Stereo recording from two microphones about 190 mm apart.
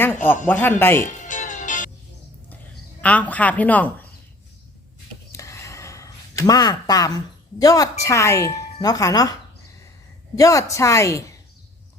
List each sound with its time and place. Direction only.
0.4 s speech: 10° left (ahead or behind)
1.0 s music: 40° left (ahead or behind)
3.0 s speech: 10° left (ahead or behind)
5.3 s a sound: 15° left (ahead or behind)
7.6 s speech: 20° left (ahead or behind)
10.3 s speech: 15° left (ahead or behind)